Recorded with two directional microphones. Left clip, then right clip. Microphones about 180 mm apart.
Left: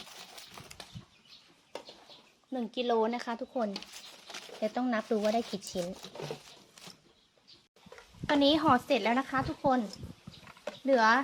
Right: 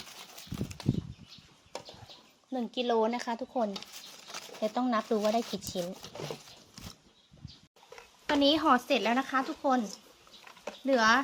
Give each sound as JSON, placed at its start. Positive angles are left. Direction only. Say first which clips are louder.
{"t": 2.5, "sound": "speech", "louder": "right 1 dB", "side_deg": 0}
{"t": 8.3, "sound": "a woman's voice", "louder": "even", "side_deg": 10}
{"t": 10.8, "sound": "speech", "louder": "even", "side_deg": 5}